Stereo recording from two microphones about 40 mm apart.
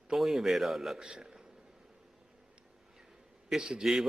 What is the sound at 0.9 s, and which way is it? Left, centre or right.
Speech, centre.